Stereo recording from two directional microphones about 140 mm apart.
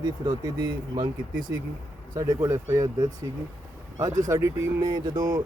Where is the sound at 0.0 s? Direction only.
30° right (ahead or behind).